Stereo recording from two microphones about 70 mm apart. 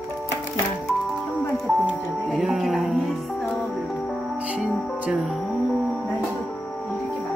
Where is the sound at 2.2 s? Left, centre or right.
Centre.